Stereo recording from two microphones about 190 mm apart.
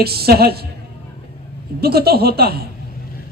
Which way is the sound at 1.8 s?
55° right (ahead or behind).